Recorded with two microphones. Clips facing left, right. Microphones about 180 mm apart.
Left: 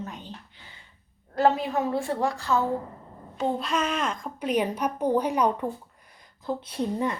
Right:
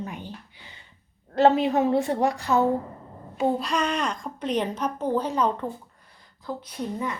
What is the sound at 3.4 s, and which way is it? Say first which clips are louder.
A child's voice: right 2 dB; centre (ahead or behind).